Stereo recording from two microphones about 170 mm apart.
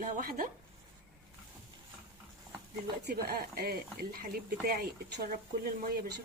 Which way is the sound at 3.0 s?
65° right (ahead or behind).